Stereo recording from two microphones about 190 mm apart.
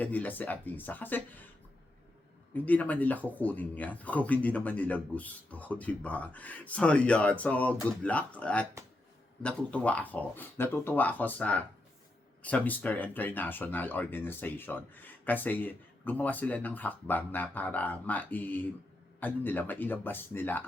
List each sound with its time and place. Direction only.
0.0 s speech: 10° left (ahead or behind)
2.5 s speech: 10° left (ahead or behind)